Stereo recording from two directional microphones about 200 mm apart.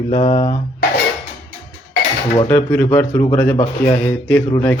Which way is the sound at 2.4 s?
10° left (ahead or behind).